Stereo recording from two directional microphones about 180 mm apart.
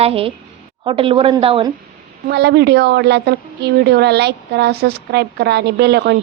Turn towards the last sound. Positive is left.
turn(degrees=-65)  # may be behind; listen again after turning